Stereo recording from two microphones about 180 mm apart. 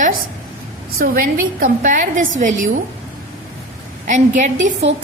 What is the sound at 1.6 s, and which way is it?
A woman's voice, 50° right (ahead or behind).